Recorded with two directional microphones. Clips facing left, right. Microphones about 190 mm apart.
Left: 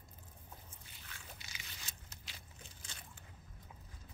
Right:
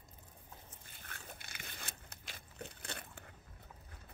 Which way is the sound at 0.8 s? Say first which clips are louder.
Right 5 dB; 50° right (ahead or behind).